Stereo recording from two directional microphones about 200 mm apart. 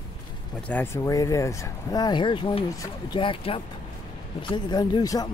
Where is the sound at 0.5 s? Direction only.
5° left (ahead or behind).